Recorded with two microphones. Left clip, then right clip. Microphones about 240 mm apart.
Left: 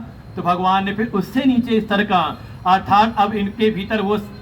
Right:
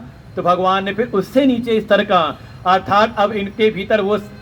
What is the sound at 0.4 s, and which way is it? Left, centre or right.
A man's voice, right.